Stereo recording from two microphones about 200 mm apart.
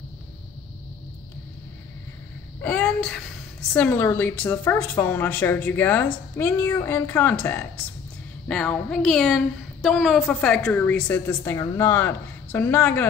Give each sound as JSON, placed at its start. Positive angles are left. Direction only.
{"t": 2.6, "sound": "a woman's voice", "side_deg": 5}